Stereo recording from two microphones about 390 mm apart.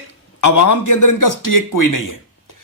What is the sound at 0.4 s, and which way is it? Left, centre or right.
Speech, left.